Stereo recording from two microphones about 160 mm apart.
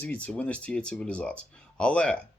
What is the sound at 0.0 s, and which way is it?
Speech, 10° left (ahead or behind).